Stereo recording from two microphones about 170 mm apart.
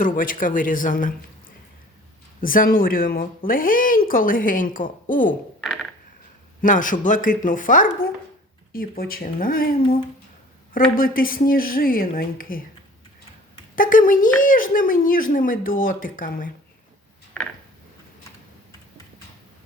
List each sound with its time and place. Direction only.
0.0 s a woman's voice: 50° left (ahead or behind)
5.6 s a sound: centre (ahead or behind)
6.6 s a woman's voice: 50° left (ahead or behind)
13.7 s speech: 55° left (ahead or behind)